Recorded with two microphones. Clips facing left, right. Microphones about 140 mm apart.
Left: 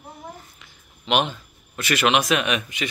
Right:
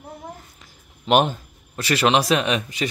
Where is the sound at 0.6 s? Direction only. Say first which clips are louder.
Right 2 dB; 45° right (ahead or behind).